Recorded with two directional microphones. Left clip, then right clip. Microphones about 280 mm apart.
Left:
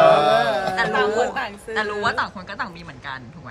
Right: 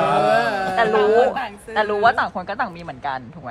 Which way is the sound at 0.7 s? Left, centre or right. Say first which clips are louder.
Right 4 dB; centre.